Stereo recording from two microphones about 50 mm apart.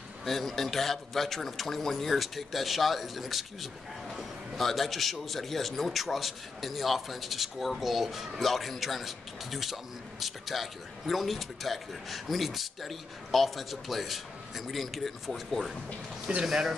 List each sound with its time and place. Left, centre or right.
0.2 s a man's voice: centre